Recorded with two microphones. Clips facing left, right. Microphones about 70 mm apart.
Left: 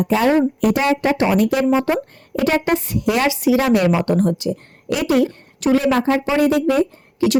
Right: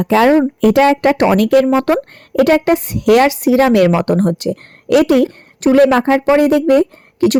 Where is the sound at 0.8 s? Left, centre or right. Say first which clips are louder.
Right 6 dB; right.